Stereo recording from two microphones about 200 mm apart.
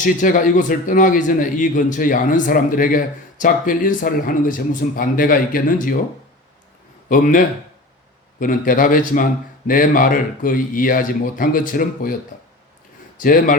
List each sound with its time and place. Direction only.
0.0 s a man's voice: 40° left (ahead or behind)
7.1 s a man's voice: 40° left (ahead or behind)
13.1 s speech: 45° left (ahead or behind)